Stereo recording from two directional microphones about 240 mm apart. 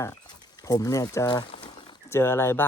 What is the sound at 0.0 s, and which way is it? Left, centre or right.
Speech, centre.